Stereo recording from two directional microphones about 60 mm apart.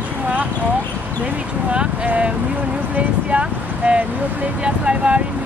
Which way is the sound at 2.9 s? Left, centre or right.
Right.